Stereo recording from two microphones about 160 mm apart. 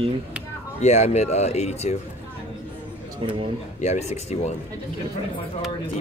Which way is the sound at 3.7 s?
45° left (ahead or behind).